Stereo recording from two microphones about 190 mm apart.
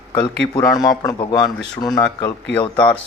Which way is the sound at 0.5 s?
20° left (ahead or behind).